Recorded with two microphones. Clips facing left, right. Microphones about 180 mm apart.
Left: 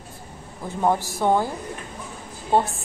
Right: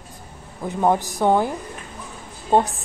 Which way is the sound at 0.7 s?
15° right (ahead or behind).